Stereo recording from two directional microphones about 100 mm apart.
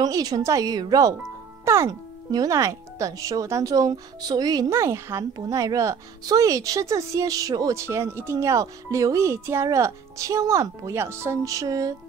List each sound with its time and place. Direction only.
0.0 s speech: 40° right (ahead or behind)
1.6 s speech: 30° right (ahead or behind)
4.6 s speech: 30° right (ahead or behind)